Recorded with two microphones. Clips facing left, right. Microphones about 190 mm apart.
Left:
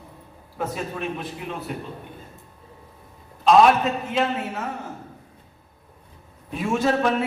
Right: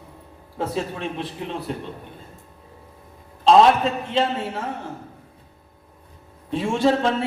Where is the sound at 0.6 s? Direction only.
30° right (ahead or behind).